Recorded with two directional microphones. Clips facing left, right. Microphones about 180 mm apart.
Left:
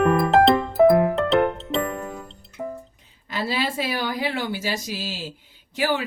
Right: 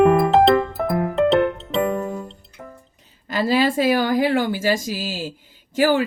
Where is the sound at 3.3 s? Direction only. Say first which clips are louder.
Right 7 dB; 45° right (ahead or behind).